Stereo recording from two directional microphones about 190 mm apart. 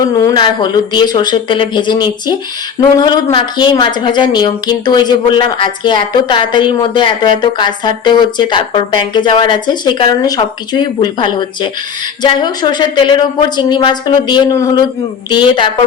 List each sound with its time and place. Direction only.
0.0 s speech: 20° left (ahead or behind)